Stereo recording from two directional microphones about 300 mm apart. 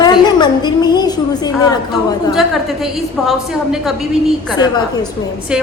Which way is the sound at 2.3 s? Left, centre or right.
Centre.